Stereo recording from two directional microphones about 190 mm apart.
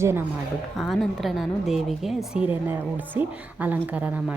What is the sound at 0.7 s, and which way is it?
A woman's voice, centre (ahead or behind).